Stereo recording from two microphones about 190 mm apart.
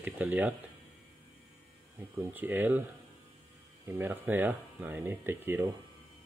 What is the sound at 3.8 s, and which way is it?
Speech, 10° right (ahead or behind).